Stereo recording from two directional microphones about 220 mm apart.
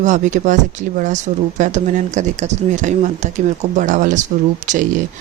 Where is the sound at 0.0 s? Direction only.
35° right (ahead or behind).